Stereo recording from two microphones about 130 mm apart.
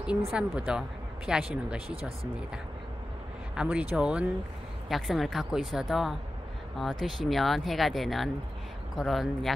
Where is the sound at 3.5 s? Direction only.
10° right (ahead or behind).